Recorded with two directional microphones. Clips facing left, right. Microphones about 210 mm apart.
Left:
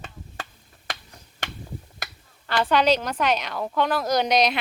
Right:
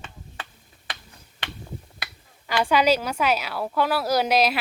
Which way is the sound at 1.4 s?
45° left (ahead or behind).